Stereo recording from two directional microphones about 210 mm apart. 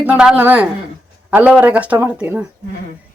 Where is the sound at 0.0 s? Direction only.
5° right (ahead or behind).